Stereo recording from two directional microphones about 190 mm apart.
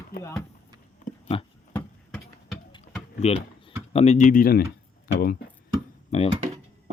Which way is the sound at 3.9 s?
35° left (ahead or behind).